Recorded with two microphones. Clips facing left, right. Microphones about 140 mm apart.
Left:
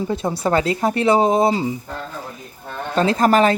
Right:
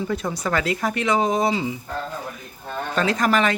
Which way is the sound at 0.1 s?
30° left (ahead or behind).